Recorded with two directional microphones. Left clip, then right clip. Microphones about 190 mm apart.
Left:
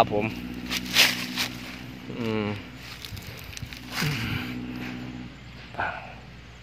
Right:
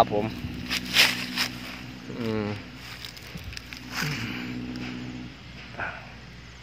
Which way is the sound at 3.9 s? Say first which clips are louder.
Left 1 dB; 30° left (ahead or behind).